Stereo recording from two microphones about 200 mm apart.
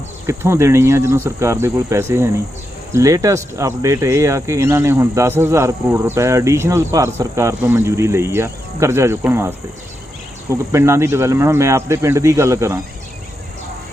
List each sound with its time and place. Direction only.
0.3 s speech: 15° right (ahead or behind)